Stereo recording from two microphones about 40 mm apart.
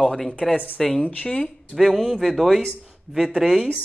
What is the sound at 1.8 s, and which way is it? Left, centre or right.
A woman's voice, centre.